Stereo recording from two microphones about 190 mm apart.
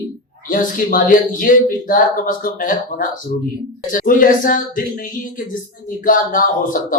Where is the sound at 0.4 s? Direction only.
45° left (ahead or behind).